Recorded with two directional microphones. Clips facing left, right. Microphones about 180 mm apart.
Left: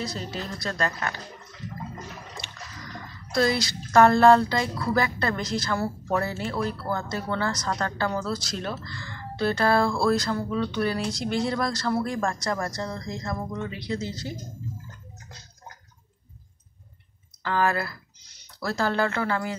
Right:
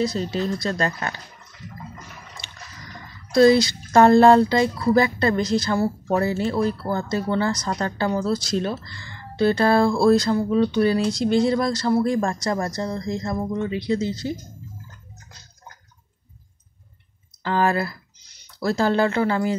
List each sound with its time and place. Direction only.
0.0 s speech: 20° right (ahead or behind)
3.3 s speech: 25° right (ahead or behind)
17.4 s speech: 25° right (ahead or behind)